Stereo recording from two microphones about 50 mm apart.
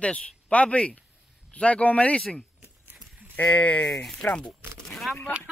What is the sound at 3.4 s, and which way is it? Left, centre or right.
Speech, left.